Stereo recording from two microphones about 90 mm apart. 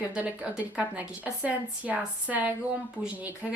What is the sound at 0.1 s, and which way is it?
A woman's voice, 15° right (ahead or behind).